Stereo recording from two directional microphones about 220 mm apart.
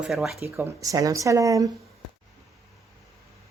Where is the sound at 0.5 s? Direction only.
15° right (ahead or behind).